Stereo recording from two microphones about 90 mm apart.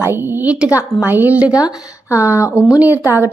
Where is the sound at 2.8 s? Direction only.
20° right (ahead or behind).